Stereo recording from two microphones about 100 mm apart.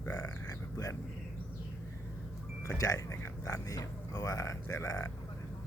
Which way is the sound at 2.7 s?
35° left (ahead or behind).